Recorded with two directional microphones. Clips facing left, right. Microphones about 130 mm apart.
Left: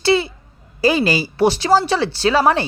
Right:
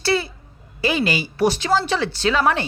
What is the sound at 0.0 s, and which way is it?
Speech, 25° left (ahead or behind).